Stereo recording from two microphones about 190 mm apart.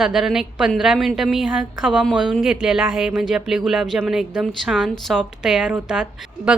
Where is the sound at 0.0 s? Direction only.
Centre (ahead or behind).